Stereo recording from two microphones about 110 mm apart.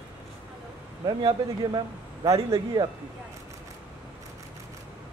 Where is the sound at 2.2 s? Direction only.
30° right (ahead or behind).